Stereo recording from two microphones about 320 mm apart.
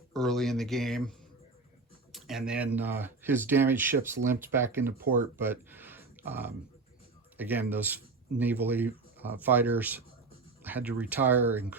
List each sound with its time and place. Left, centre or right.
0.1 s speech: centre
2.1 s speech: centre